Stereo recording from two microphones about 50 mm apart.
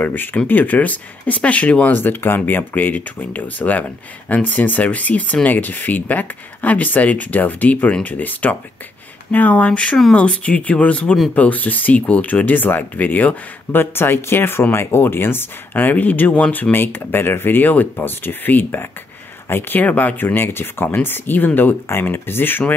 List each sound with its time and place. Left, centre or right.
0.0 s speech: left
1.9 s speech: left
9.7 s speech: left
13.7 s speech: left
16.7 s speech: left
19.5 s speech: left
20.3 s speech: left
21.8 s speech: left